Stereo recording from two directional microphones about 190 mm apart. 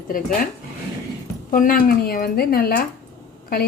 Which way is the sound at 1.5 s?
45° left (ahead or behind).